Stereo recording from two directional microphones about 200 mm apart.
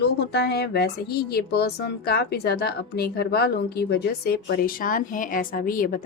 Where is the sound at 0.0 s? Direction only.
55° left (ahead or behind).